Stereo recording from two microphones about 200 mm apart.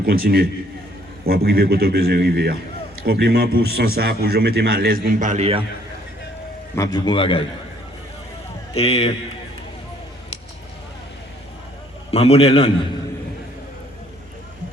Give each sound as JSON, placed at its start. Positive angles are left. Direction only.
{"t": 0.0, "sound": "a man's voice", "side_deg": -50}
{"t": 5.0, "sound": "a man's voice", "side_deg": -35}
{"t": 6.7, "sound": "a man's voice", "side_deg": 20}
{"t": 8.7, "sound": "a man's voice", "side_deg": 30}
{"t": 12.1, "sound": "a man's voice", "side_deg": 30}